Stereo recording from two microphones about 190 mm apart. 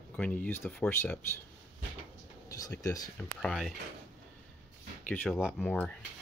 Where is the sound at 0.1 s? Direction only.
10° left (ahead or behind).